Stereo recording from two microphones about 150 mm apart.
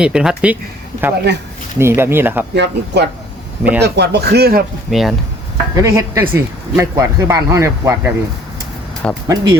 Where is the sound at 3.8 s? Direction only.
90° right.